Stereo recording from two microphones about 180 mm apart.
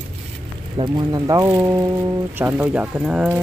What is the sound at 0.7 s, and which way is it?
Speech, 25° right (ahead or behind).